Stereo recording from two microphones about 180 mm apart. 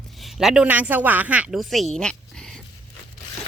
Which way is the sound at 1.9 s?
5° left (ahead or behind).